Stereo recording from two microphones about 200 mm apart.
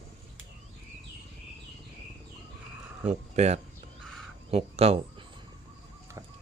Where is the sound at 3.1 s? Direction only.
35° right (ahead or behind).